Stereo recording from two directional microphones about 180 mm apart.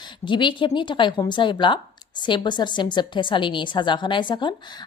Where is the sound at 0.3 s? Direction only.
25° left (ahead or behind).